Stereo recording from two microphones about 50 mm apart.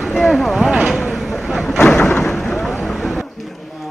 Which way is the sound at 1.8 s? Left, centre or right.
Centre.